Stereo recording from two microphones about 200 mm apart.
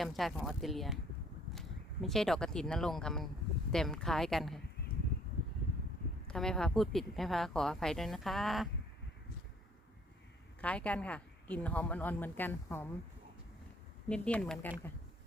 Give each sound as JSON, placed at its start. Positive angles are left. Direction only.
{"t": 0.0, "sound": "speech", "side_deg": 0}
{"t": 6.2, "sound": "speech", "side_deg": 5}
{"t": 10.6, "sound": "a woman's voice", "side_deg": 5}
{"t": 14.1, "sound": "a woman's voice", "side_deg": 5}